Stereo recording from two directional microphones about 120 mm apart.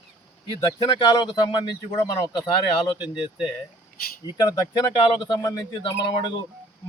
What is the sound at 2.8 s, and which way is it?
Speech, 45° left (ahead or behind).